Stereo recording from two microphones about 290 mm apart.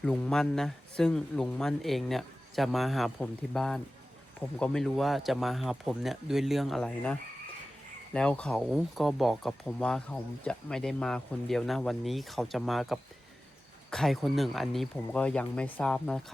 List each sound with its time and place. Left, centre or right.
0.0 s speech: centre